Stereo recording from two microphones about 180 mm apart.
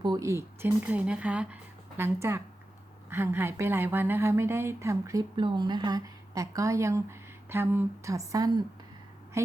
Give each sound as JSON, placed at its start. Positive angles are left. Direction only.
{"t": 0.0, "sound": "a woman's voice", "side_deg": -20}